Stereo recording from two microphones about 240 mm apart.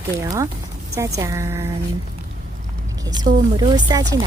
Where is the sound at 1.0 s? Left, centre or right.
Centre.